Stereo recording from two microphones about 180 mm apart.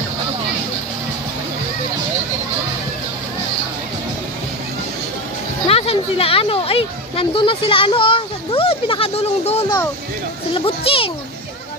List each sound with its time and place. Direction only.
5.7 s a child's voice: 35° left (ahead or behind)